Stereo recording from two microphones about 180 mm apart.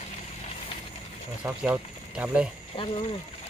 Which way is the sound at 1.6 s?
5° right (ahead or behind).